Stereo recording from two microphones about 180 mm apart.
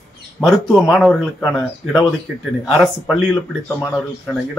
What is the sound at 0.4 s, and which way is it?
Speech, centre (ahead or behind).